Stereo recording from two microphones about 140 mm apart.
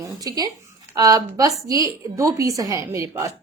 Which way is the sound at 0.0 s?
25° right (ahead or behind).